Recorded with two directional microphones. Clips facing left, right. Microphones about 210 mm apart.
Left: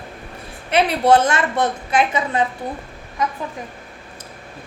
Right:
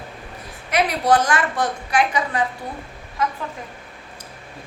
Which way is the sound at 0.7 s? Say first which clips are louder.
Left 3 dB; 25° left (ahead or behind).